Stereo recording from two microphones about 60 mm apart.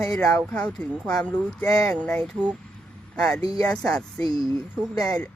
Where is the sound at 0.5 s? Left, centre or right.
Centre.